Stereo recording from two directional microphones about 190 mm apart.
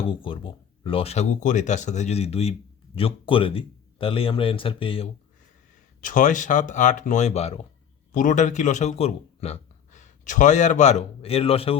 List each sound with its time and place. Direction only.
0.0 s speech: 30° left (ahead or behind)
6.0 s a man's voice: 45° left (ahead or behind)